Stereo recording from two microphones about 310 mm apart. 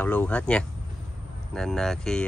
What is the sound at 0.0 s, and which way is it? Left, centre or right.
Speech, centre.